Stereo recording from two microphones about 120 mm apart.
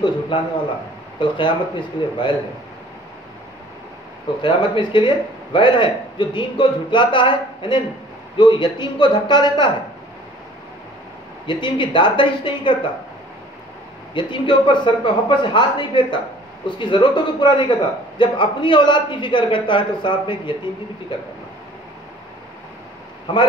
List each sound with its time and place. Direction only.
1.2 s a man's voice: 40° left (ahead or behind)
4.4 s a man's voice: 40° left (ahead or behind)
11.4 s a man's voice: 40° left (ahead or behind)
14.1 s a man's voice: 40° left (ahead or behind)